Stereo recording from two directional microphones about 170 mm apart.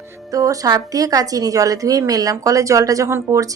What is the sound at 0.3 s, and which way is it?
A woman's voice, 20° right (ahead or behind).